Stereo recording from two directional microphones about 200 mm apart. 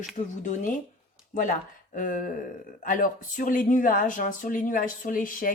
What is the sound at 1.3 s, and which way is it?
Speech, 40° left (ahead or behind).